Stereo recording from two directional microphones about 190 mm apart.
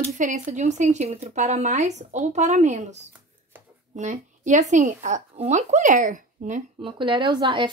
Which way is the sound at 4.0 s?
40° right (ahead or behind).